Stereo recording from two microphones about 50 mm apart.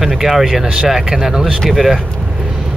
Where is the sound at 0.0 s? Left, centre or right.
Centre.